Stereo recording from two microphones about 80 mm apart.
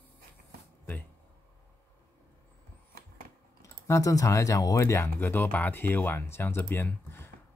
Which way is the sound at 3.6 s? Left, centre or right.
Left.